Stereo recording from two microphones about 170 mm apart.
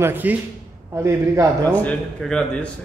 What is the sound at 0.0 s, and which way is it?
A man's voice, 10° right (ahead or behind).